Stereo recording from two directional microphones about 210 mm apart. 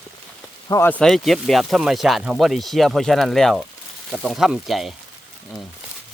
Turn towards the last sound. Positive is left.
turn(degrees=0)  # may be behind; listen again after turning